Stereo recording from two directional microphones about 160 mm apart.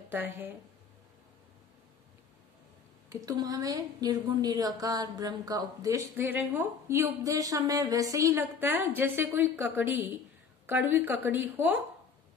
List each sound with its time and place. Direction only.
0.1 s a woman's voice: 10° right (ahead or behind)
3.1 s a woman's voice: 20° right (ahead or behind)